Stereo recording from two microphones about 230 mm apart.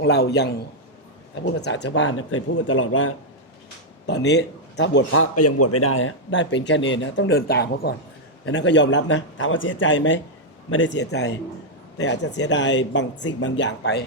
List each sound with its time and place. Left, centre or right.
0.0 s speech: left
1.6 s speech: left